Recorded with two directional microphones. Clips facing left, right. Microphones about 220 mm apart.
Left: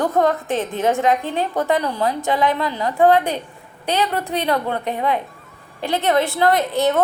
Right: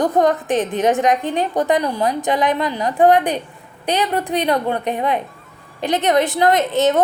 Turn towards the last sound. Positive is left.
turn(degrees=-20)  # may be behind; listen again after turning